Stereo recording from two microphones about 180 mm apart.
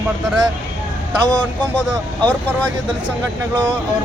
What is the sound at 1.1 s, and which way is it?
Speech, 25° right (ahead or behind).